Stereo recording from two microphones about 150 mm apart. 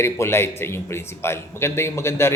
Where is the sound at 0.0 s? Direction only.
15° left (ahead or behind).